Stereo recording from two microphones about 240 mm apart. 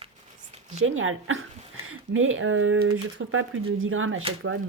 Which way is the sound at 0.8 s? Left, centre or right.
Right.